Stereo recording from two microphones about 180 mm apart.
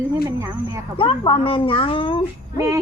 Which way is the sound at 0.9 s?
30° left (ahead or behind).